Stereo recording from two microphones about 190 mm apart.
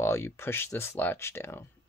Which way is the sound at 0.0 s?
10° left (ahead or behind).